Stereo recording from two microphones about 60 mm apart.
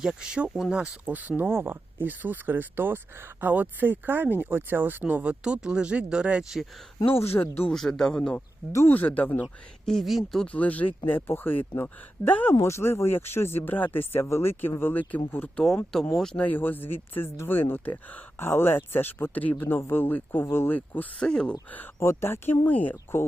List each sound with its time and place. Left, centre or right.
0.0 s speech: centre
1.1 s speech: right
5.4 s speech: centre
7.1 s speech: left
7.7 s a man's voice: centre
8.9 s speech: left
9.8 s speech: centre
10.4 s speech: left
12.6 s speech: left
15.6 s a man's voice: centre
16.4 s speech: left
21.2 s a man's voice: centre
22.1 s speech: left
22.6 s speech: left